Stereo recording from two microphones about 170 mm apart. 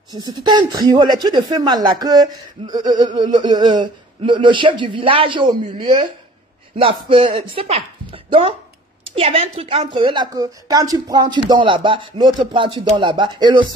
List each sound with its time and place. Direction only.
0.1 s speech: 25° right (ahead or behind)